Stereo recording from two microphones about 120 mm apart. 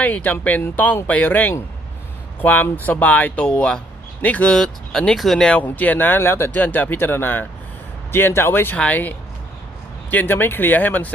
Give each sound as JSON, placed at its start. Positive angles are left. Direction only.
{"t": 0.0, "sound": "speech", "side_deg": 15}